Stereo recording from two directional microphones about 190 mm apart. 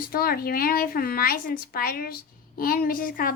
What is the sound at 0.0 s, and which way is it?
A woman's voice, 50° left (ahead or behind).